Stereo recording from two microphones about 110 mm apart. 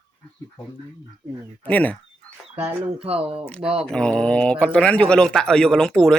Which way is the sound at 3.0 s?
60° right (ahead or behind).